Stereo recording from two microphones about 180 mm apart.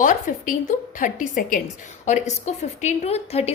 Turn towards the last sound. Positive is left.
turn(degrees=35)  # may be behind; listen again after turning